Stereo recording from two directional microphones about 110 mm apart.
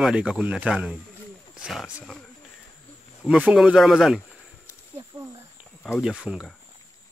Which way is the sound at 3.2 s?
10° right (ahead or behind).